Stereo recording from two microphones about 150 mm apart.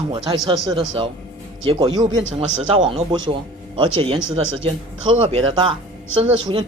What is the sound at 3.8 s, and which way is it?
Speech, 35° right (ahead or behind).